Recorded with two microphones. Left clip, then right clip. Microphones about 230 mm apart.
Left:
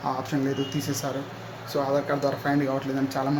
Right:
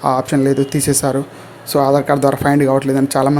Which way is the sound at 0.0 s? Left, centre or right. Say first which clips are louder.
Right 13 dB; right.